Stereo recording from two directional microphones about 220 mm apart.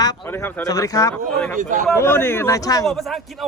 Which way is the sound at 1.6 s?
35° right (ahead or behind).